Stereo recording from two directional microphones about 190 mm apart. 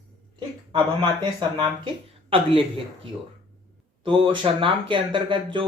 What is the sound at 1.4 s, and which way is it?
Speech, 25° right (ahead or behind).